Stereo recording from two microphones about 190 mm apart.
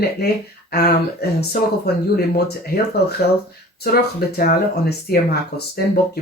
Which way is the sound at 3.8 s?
50° left (ahead or behind).